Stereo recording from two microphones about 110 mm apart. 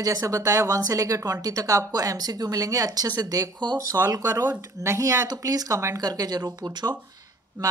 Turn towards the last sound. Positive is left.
turn(degrees=-45)  # may be behind; listen again after turning